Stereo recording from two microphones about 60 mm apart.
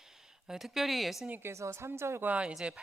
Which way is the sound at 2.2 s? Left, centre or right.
Right.